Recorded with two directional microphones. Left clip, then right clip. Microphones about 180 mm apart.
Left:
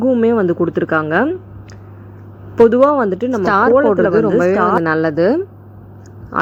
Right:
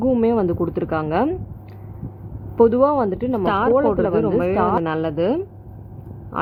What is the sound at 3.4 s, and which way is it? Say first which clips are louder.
Speech: left 6 dB; 25° left (ahead or behind).